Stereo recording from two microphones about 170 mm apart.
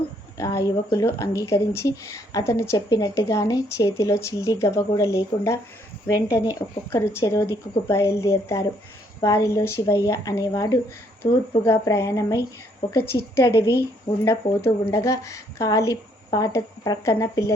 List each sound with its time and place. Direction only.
0.3 s a woman's voice: 20° left (ahead or behind)